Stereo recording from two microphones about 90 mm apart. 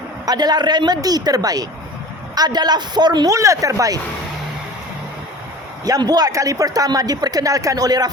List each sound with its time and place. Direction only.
0.3 s speech: 50° right (ahead or behind)
3.2 s speech: 35° right (ahead or behind)
5.8 s speech: 45° right (ahead or behind)